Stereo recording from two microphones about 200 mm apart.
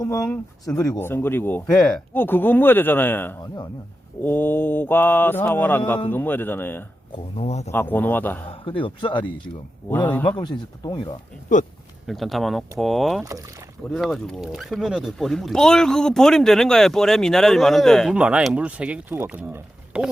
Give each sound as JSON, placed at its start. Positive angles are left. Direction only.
{"t": 0.0, "sound": "mantra", "side_deg": 15}
{"t": 3.4, "sound": "speech", "side_deg": 20}
{"t": 4.2, "sound": "mantra", "side_deg": 10}
{"t": 7.3, "sound": "speech", "side_deg": 30}
{"t": 7.7, "sound": "mantra", "side_deg": 10}
{"t": 8.4, "sound": "speech", "side_deg": 25}
{"t": 9.8, "sound": "mantra", "side_deg": 10}
{"t": 10.2, "sound": "speech", "side_deg": 25}
{"t": 12.0, "sound": "speech", "side_deg": 0}